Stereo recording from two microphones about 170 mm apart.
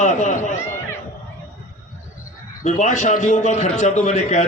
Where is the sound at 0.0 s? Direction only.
45° left (ahead or behind).